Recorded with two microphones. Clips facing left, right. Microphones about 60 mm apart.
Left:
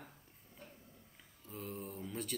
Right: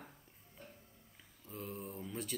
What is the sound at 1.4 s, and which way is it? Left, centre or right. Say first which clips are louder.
Speech: even; centre.